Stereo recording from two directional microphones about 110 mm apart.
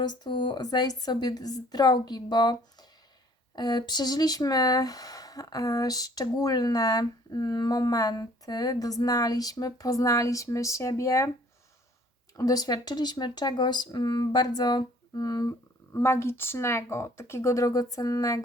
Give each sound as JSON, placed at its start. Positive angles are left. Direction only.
{"t": 0.0, "sound": "speech", "side_deg": 45}
{"t": 12.4, "sound": "speech", "side_deg": 35}